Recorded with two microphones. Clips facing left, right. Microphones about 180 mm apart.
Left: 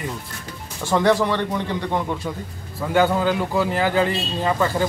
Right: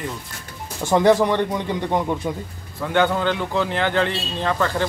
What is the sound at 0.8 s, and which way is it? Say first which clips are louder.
Speech: right 2 dB; 20° right (ahead or behind).